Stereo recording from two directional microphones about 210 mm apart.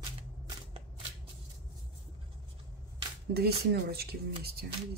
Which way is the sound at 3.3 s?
50° right (ahead or behind).